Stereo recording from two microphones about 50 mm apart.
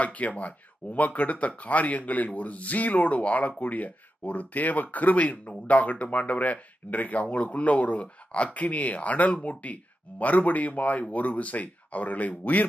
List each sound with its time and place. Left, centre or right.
0.0 s speech: left